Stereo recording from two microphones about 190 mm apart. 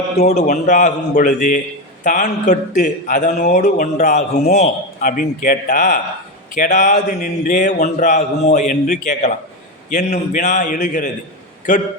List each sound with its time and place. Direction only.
0.2 s a man's voice: 35° left (ahead or behind)